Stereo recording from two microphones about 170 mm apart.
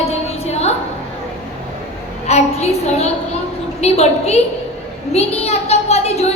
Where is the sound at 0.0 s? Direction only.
35° left (ahead or behind).